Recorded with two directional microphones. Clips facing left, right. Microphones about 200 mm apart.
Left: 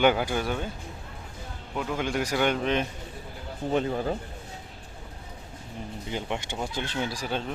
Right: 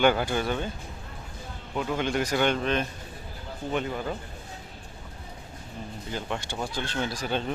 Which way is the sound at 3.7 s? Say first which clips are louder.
Left 3 dB; 35° left (ahead or behind).